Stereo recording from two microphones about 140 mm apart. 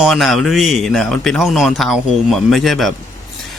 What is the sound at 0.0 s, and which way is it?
Speech, centre (ahead or behind).